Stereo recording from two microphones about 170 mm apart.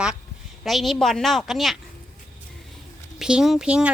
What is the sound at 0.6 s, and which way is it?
A woman's voice, centre (ahead or behind).